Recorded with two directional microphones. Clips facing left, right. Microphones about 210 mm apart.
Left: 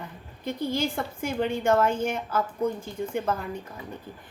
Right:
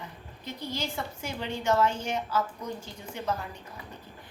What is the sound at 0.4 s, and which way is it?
A woman's voice, 50° left (ahead or behind).